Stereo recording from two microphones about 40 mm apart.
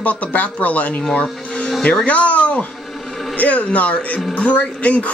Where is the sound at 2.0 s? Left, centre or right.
Left.